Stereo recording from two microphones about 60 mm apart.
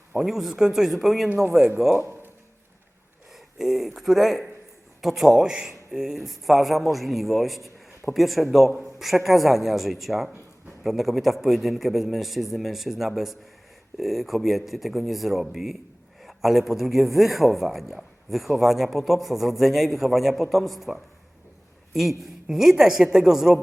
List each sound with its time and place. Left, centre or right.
0.2 s a man's voice: centre
2.0 s a sound: right
3.3 s a man's voice: centre
22.4 s speech: centre